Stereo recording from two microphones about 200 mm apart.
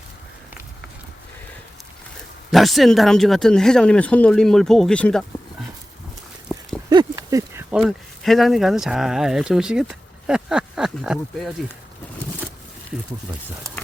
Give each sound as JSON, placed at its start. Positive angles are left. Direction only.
{"t": 2.5, "sound": "speech", "side_deg": 0}
{"t": 6.9, "sound": "a sound", "side_deg": -15}
{"t": 7.7, "sound": "speech", "side_deg": 0}